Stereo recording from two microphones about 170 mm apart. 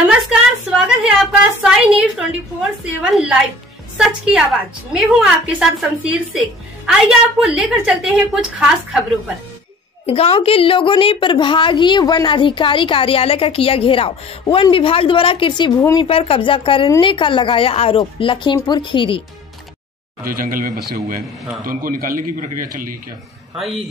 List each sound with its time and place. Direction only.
0.1 s a woman's voice: 5° right (ahead or behind)
2.8 s a woman's voice: 5° right (ahead or behind)
10.0 s a woman's voice: 35° left (ahead or behind)
20.2 s a man's voice: 55° right (ahead or behind)